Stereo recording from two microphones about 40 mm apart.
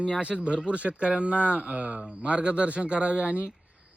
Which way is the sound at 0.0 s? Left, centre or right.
Right.